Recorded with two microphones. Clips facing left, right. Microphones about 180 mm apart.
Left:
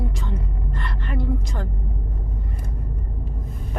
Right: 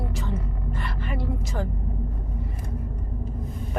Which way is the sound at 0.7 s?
5° right (ahead or behind).